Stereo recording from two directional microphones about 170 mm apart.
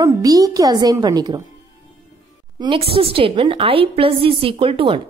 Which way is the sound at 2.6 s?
30° right (ahead or behind).